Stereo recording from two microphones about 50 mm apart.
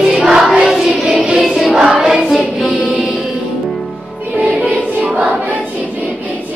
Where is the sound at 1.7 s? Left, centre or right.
Centre.